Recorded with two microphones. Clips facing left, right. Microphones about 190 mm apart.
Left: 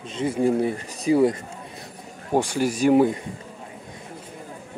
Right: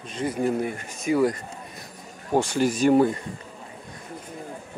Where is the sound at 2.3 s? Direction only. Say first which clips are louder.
Even; 10° left (ahead or behind).